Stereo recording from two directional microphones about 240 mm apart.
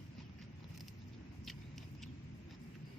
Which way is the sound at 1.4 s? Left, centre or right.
Centre.